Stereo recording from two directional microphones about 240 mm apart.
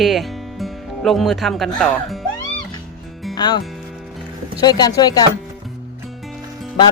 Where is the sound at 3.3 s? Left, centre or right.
Centre.